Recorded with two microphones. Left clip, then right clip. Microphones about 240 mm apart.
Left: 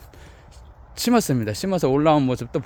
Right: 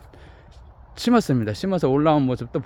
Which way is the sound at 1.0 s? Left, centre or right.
Centre.